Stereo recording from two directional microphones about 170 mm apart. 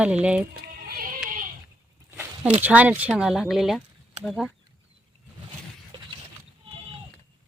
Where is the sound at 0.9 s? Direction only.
55° right (ahead or behind).